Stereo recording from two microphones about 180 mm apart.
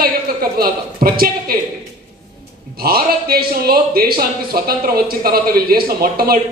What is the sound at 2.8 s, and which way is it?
A man's voice, 55° right (ahead or behind).